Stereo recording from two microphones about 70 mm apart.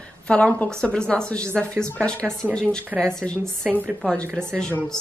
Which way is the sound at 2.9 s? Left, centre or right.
Centre.